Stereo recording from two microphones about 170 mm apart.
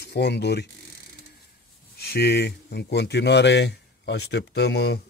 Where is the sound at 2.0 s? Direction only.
70° left (ahead or behind).